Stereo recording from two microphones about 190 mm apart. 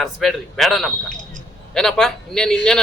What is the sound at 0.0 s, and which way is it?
A man's voice, centre (ahead or behind).